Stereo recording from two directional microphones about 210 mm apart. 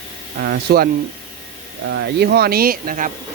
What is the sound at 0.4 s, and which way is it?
Speech, 45° right (ahead or behind).